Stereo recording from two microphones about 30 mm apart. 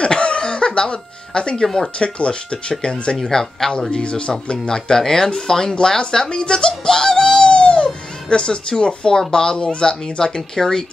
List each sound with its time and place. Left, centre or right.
0.0 s music: left
2.0 s speech: left
3.3 s speech: centre
6.8 s music: left
9.3 s speech: left
10.5 s speech: centre